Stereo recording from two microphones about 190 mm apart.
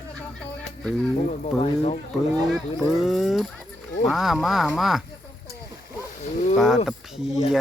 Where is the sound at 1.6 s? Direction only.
35° left (ahead or behind).